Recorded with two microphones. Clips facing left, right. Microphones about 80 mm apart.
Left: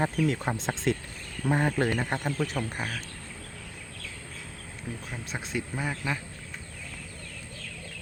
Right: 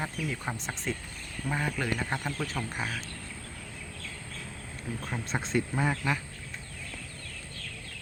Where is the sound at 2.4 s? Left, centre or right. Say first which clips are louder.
Left 4 dB; centre.